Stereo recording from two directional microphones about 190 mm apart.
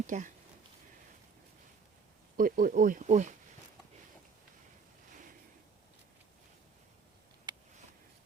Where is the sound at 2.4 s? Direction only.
45° right (ahead or behind).